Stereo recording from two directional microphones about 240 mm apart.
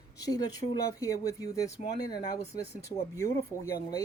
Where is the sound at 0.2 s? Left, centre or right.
Centre.